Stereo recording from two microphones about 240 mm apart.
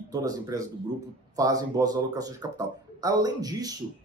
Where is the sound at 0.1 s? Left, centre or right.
Centre.